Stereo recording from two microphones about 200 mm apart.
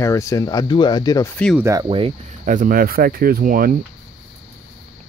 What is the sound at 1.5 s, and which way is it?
Speech, 15° right (ahead or behind).